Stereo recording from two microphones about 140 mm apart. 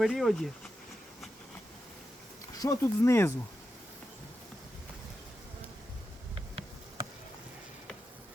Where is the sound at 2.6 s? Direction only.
20° left (ahead or behind).